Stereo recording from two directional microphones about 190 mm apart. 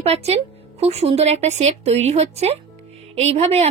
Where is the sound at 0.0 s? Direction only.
35° right (ahead or behind).